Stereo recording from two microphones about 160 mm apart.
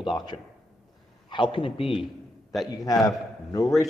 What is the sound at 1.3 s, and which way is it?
Speech, 30° left (ahead or behind).